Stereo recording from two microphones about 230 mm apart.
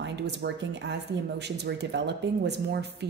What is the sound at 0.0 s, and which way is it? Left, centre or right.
A woman's voice, right.